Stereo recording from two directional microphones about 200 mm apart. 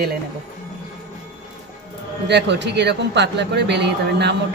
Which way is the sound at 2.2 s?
60° right (ahead or behind).